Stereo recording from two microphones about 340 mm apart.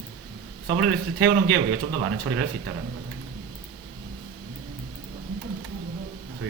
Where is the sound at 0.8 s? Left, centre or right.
Right.